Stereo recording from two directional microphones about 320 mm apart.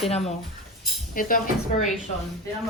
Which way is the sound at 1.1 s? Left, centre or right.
Left.